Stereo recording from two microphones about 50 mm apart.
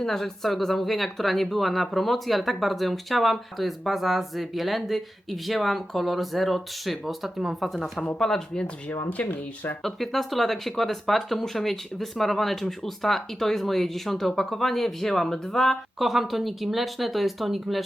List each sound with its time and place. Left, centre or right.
0.0 s speech: centre
8.9 s speech: left
9.8 s speech: centre